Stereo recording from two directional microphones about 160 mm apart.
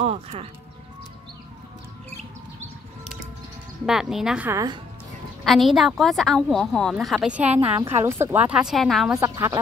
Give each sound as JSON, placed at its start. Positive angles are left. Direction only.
{"t": 0.0, "sound": "speech", "side_deg": -40}
{"t": 3.8, "sound": "a woman's voice", "side_deg": -5}
{"t": 4.5, "sound": "speech", "side_deg": -20}
{"t": 5.4, "sound": "a woman's voice", "side_deg": 0}
{"t": 9.2, "sound": "speech", "side_deg": -20}